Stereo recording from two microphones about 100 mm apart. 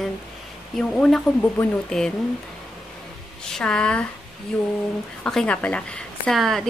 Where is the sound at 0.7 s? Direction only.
10° left (ahead or behind).